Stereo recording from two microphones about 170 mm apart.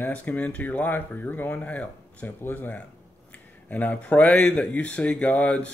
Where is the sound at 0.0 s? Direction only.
10° left (ahead or behind).